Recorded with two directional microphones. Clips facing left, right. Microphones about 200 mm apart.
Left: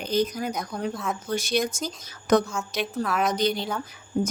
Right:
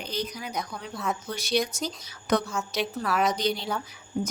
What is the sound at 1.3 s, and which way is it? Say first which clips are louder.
Speech: left 3 dB; 50° left (ahead or behind).